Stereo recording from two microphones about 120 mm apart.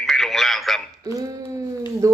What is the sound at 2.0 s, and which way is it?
Speech, 25° right (ahead or behind).